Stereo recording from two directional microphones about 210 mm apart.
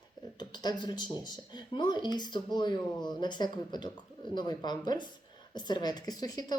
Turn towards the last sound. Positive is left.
turn(degrees=20)  # may be behind; listen again after turning